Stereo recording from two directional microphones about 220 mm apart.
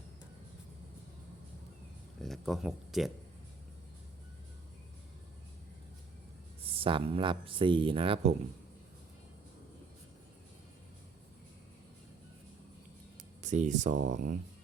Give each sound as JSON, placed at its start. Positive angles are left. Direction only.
{"t": 2.2, "sound": "speech", "side_deg": 0}
{"t": 6.6, "sound": "speech", "side_deg": -25}
{"t": 13.4, "sound": "speech", "side_deg": -35}